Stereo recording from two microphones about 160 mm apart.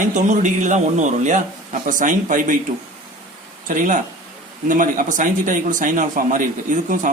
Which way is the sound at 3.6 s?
55° right (ahead or behind).